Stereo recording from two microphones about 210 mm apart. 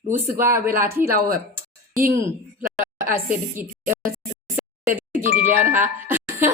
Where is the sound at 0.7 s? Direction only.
45° right (ahead or behind).